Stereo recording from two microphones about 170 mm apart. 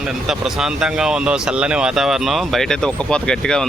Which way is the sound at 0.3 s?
5° right (ahead or behind).